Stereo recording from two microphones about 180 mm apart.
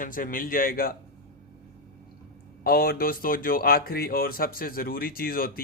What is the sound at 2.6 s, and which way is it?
Speech, 55° left (ahead or behind).